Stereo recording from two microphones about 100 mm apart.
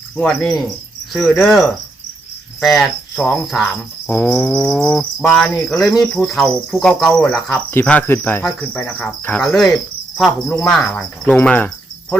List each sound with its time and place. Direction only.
0.2 s cricket: 5° left (ahead or behind)
4.0 s cricket: 20° left (ahead or behind)